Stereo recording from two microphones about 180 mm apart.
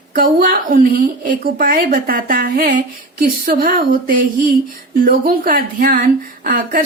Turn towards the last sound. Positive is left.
turn(degrees=-50)  # may be behind; listen again after turning